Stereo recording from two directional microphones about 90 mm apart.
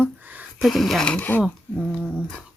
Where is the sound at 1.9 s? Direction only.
5° left (ahead or behind).